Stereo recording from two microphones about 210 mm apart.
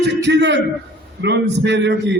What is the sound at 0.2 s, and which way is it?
A man's voice, 55° right (ahead or behind).